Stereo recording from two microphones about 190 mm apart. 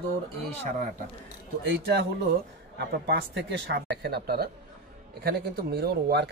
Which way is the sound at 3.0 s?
65° right (ahead or behind).